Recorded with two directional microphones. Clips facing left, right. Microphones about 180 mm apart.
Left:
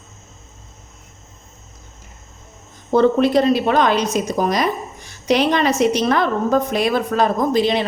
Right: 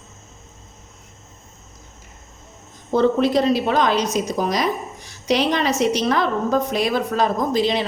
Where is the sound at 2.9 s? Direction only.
60° left (ahead or behind).